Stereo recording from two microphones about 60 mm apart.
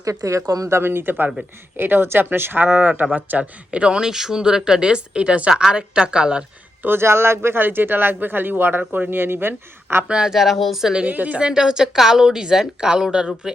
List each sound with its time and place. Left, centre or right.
0.0 s speech: right
0.7 s a woman's voice: right; by 6.4 s centre
6.8 s speech: right
10.1 s a woman's voice: centre
10.9 s a woman's voice: right